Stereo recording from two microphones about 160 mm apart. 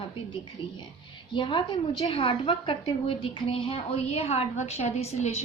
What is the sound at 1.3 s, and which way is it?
A woman's voice, 30° left (ahead or behind).